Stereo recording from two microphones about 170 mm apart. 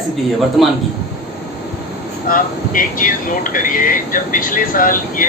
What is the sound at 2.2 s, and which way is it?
Speech, 55° left (ahead or behind).